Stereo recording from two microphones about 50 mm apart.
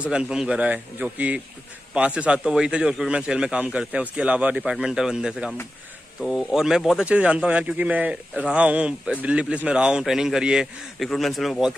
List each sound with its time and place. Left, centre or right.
0.0 s a man's voice: centre
4.8 s a man's voice: centre
6.5 s a man's voice: centre
7.1 s speech: right
10.0 s a man's voice: centre
11.1 s a man's voice: centre